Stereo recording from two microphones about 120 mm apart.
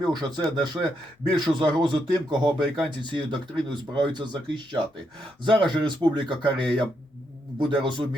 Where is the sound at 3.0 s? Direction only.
40° right (ahead or behind).